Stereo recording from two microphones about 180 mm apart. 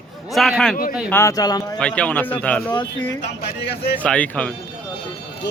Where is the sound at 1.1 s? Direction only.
15° left (ahead or behind).